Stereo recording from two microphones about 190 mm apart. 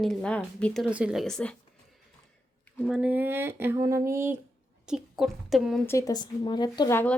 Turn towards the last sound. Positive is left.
turn(degrees=15)  # may be behind; listen again after turning